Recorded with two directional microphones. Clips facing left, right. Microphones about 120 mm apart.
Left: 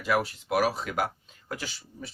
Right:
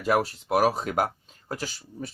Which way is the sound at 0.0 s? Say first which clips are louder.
Right 3 dB; 40° right (ahead or behind).